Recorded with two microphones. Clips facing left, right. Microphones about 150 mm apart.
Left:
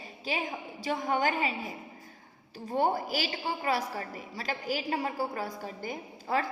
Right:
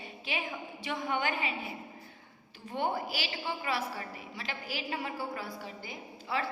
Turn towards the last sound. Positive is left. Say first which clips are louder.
# left 4 dB
turn(degrees=45)  # may be behind; listen again after turning